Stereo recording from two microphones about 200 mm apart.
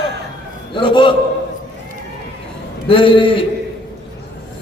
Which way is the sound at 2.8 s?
25° left (ahead or behind).